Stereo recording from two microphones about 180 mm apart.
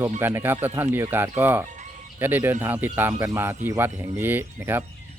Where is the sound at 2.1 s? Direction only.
10° right (ahead or behind).